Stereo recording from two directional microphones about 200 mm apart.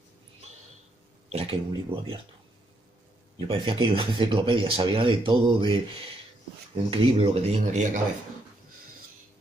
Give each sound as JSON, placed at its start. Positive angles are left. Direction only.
{"t": 1.3, "sound": "speech", "side_deg": -30}
{"t": 3.3, "sound": "speech", "side_deg": -25}
{"t": 6.9, "sound": "speech", "side_deg": -25}